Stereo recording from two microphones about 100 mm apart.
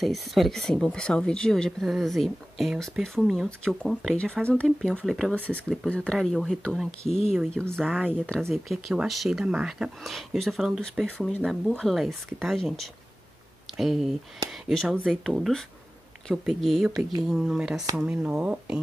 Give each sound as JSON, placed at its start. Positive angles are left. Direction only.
{"t": 0.0, "sound": "speech", "side_deg": 0}
{"t": 6.9, "sound": "speech", "side_deg": 80}
{"t": 7.7, "sound": "speech", "side_deg": 5}